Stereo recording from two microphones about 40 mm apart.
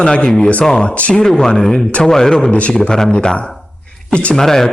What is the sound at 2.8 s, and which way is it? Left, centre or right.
A man's voice, centre.